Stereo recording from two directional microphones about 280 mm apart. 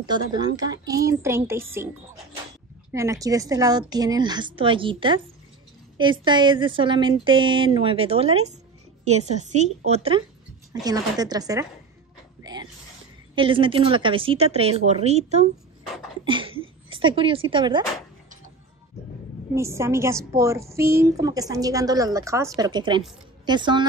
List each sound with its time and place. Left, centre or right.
0.0 s a woman's voice: centre
2.9 s a woman's voice: centre
13.4 s speech: centre
19.5 s a woman's voice: centre